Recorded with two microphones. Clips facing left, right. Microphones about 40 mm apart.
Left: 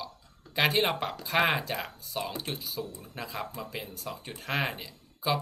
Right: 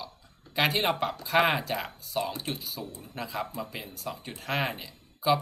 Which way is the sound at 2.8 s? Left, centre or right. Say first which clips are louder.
Left 2 dB; right.